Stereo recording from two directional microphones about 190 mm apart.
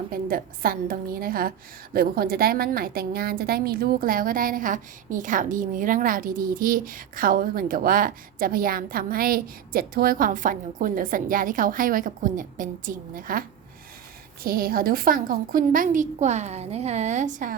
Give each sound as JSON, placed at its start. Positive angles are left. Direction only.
{"t": 0.1, "sound": "a woman's voice", "side_deg": -50}
{"t": 14.4, "sound": "a woman's voice", "side_deg": -50}